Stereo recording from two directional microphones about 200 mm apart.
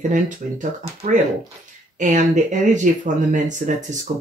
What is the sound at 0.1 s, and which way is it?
Speech, 40° right (ahead or behind).